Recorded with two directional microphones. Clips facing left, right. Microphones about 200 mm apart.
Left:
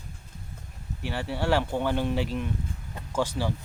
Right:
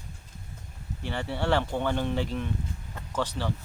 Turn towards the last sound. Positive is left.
turn(degrees=10)  # may be behind; listen again after turning